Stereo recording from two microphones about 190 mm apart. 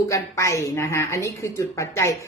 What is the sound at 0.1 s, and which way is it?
A woman's voice, 15° left (ahead or behind).